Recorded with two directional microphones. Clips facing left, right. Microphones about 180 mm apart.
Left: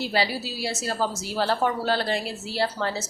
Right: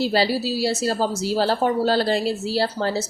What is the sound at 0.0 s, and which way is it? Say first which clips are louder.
Speech: right 6 dB; 35° right (ahead or behind).